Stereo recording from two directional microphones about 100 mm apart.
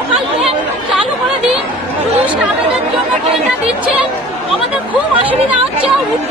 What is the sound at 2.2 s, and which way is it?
Speech, 15° right (ahead or behind).